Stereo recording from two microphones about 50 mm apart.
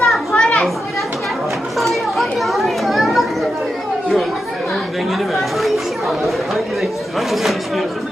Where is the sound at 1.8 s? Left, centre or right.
Centre.